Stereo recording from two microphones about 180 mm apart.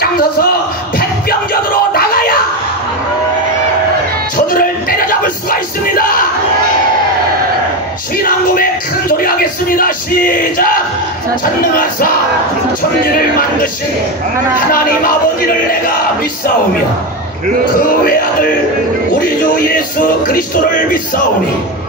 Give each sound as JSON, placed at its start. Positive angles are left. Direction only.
{"t": 0.0, "sound": "a sound", "side_deg": 55}
{"t": 1.5, "sound": "music", "side_deg": 55}
{"t": 4.6, "sound": "music", "side_deg": 55}
{"t": 9.1, "sound": "music", "side_deg": 50}